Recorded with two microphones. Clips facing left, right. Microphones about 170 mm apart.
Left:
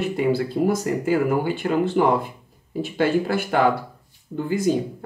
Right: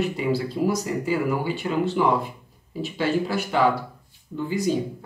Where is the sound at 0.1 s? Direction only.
50° left (ahead or behind).